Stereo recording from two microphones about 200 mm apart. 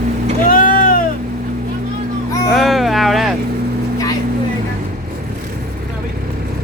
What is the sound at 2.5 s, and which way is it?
Speech, centre (ahead or behind).